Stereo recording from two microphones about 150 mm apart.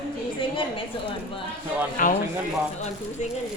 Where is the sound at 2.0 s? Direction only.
65° left (ahead or behind).